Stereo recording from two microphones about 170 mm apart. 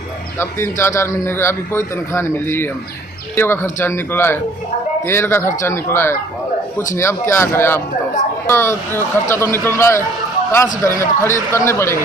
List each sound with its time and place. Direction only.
0.4 s a man's voice: 15° left (ahead or behind)